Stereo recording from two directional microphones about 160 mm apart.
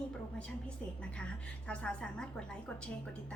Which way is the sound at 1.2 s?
5° left (ahead or behind).